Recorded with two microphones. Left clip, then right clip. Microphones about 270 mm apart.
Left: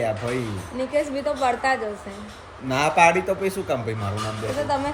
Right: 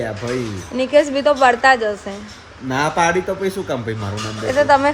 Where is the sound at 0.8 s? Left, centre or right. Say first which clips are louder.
Right 9 dB; right.